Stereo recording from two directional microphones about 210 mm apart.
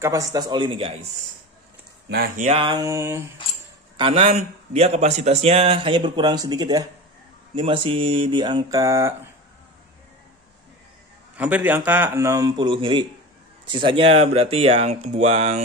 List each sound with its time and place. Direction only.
0.0 s a man's voice: 15° right (ahead or behind)
2.0 s a man's voice: 45° right (ahead or behind); by 3.3 s 15° right (ahead or behind)
3.9 s a man's voice: 25° right (ahead or behind)
11.3 s a man's voice: 5° right (ahead or behind); by 15.6 s 30° right (ahead or behind)